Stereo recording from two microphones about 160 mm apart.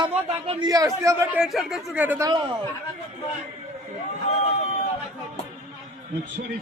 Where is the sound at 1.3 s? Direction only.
Centre (ahead or behind).